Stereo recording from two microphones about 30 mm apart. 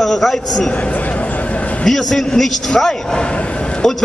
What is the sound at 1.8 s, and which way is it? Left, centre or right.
Speech, centre.